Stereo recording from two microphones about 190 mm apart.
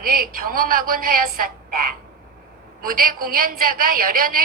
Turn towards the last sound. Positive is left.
turn(degrees=-45)  # may be behind; listen again after turning